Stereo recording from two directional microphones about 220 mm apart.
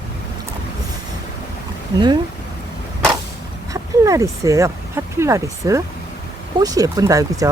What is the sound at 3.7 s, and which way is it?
Speech, 15° right (ahead or behind).